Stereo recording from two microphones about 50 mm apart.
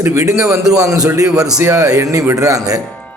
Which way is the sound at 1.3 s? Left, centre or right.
Centre.